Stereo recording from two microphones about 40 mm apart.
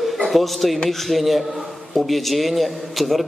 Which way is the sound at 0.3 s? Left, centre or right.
Centre.